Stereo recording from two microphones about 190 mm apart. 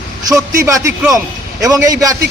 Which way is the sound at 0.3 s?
15° right (ahead or behind).